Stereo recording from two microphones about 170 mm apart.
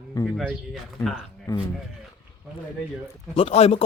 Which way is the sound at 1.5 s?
20° left (ahead or behind).